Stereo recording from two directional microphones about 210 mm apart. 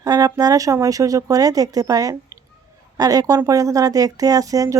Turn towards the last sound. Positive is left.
turn(degrees=-15)  # may be behind; listen again after turning